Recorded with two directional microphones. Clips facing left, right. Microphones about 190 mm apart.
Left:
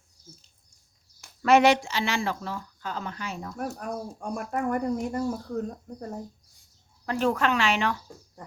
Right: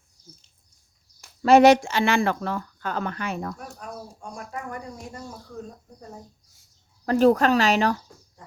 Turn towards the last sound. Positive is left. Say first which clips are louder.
# right 5 dB
turn(degrees=-40)  # may be behind; listen again after turning